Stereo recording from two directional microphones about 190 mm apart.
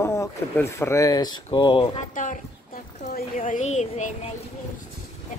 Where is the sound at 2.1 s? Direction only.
45° left (ahead or behind).